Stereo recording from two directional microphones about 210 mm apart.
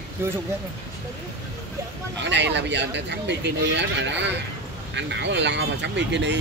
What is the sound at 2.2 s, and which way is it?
Speech, 55° right (ahead or behind).